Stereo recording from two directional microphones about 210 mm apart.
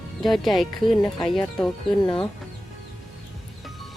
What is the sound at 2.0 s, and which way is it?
Speech, 20° left (ahead or behind).